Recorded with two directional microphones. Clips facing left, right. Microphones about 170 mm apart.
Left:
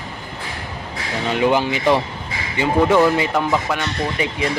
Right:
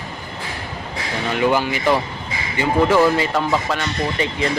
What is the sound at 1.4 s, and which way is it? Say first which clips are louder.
Speech: left 1 dB; 20° left (ahead or behind).